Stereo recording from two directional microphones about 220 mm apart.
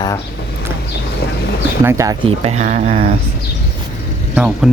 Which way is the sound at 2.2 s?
30° right (ahead or behind).